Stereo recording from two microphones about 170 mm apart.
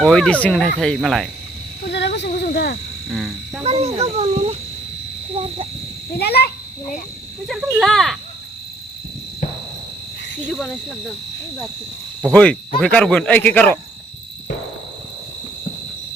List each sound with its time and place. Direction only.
0.0 s speech: 5° left (ahead or behind)
1.8 s a sound: 75° left (ahead or behind)
2.4 s hoot: 70° left (ahead or behind)
3.1 s speech: centre (ahead or behind)
3.6 s a child's voice: 40° right (ahead or behind)
6.1 s a child's voice: 70° left (ahead or behind)
7.4 s speech: centre (ahead or behind)
12.3 s speech: 5° left (ahead or behind)